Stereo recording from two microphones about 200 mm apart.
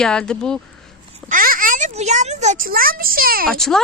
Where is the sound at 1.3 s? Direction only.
45° right (ahead or behind).